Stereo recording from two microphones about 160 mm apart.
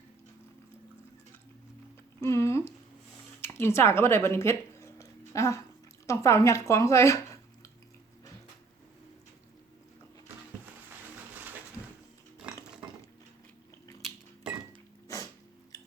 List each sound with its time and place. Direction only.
2.2 s a sound: 15° left (ahead or behind)
3.4 s a woman's voice: 15° left (ahead or behind)
15.0 s sneeze: 20° left (ahead or behind)